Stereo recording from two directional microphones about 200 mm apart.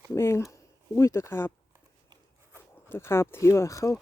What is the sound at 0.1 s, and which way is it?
Speech, 15° left (ahead or behind).